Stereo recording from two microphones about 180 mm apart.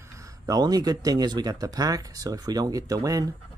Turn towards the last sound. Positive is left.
turn(degrees=-20)  # may be behind; listen again after turning